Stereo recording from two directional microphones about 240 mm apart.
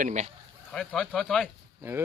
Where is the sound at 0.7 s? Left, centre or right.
Centre.